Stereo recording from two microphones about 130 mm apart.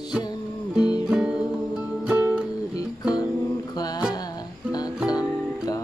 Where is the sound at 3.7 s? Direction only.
30° left (ahead or behind).